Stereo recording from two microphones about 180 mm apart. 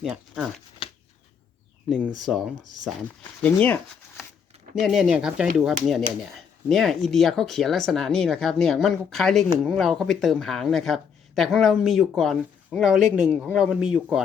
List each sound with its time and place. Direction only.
0.0 s speech: centre (ahead or behind)
2.1 s speech: centre (ahead or behind)
4.7 s speech: centre (ahead or behind)